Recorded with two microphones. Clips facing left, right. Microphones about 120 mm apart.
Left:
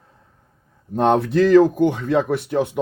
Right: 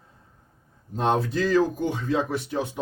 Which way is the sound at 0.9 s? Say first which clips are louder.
Left 7 dB; 65° left (ahead or behind).